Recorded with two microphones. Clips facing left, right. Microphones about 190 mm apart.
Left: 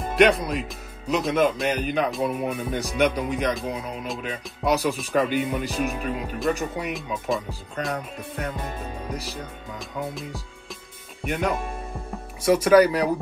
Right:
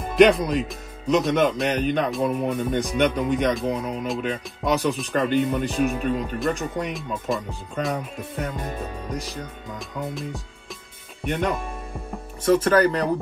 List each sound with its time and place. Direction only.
0.2 s speech: centre (ahead or behind)
11.2 s speech: 5° left (ahead or behind)